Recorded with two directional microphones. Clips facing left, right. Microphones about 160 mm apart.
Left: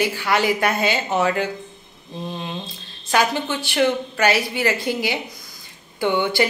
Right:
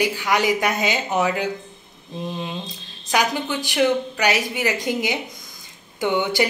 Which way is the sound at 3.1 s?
15° right (ahead or behind).